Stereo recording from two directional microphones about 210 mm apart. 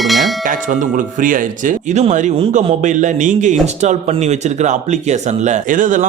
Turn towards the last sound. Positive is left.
turn(degrees=-40)  # may be behind; listen again after turning